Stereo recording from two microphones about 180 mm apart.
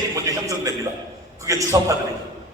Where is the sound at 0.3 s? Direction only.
20° right (ahead or behind).